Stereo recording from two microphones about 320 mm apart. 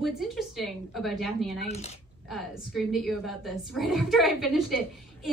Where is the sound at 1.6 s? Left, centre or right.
Centre.